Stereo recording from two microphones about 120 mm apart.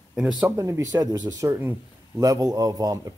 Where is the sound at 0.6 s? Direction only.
25° right (ahead or behind).